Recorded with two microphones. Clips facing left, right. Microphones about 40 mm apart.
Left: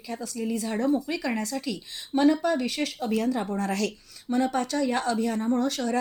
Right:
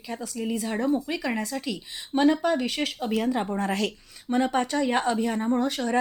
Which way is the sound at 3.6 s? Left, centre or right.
Right.